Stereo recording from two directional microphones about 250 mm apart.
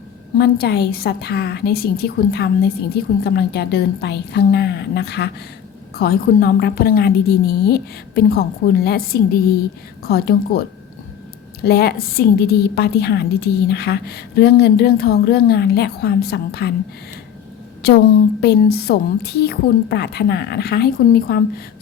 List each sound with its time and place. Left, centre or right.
0.3 s a woman's voice: left
17.8 s a woman's voice: left